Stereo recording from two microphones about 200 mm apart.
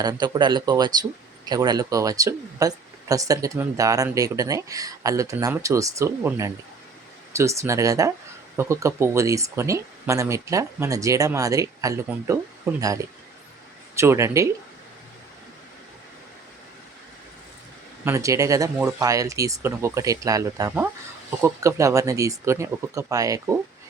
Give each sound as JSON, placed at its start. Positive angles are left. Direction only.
{"t": 0.0, "sound": "speech", "side_deg": -20}
{"t": 13.9, "sound": "speech", "side_deg": -15}
{"t": 18.0, "sound": "speech", "side_deg": -15}